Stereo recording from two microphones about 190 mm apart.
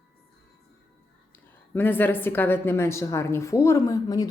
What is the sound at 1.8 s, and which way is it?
A woman's voice, 10° left (ahead or behind).